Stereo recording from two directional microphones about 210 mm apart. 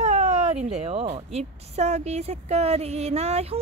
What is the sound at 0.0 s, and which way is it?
Speech, 35° right (ahead or behind).